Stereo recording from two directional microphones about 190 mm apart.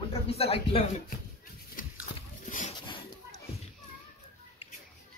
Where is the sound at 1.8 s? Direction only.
45° left (ahead or behind).